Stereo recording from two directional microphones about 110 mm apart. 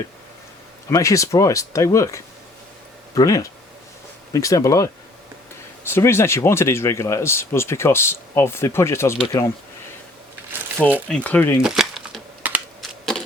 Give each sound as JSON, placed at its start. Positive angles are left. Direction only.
{"t": 0.9, "sound": "speech", "side_deg": 30}
{"t": 5.9, "sound": "speech", "side_deg": 25}
{"t": 11.1, "sound": "speech", "side_deg": 15}
{"t": 11.6, "sound": "a sound", "side_deg": -5}
{"t": 12.4, "sound": "computer keyboard", "side_deg": -15}
{"t": 12.8, "sound": "a sound", "side_deg": 5}